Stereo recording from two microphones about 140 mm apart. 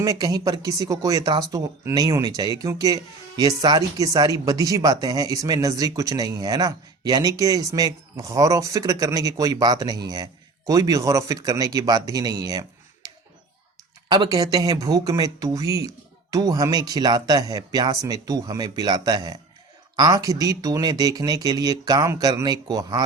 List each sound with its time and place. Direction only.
0.0 s speech: 25° right (ahead or behind)
14.1 s speech: 25° right (ahead or behind)